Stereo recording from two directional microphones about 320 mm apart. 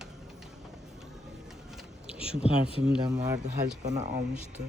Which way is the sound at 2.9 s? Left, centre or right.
Centre.